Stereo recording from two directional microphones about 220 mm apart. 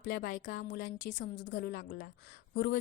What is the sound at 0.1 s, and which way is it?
A woman's voice, 40° left (ahead or behind).